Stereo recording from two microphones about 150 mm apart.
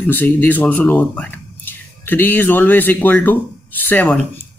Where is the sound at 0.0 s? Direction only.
10° left (ahead or behind).